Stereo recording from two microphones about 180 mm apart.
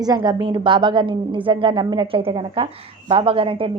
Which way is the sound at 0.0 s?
25° right (ahead or behind).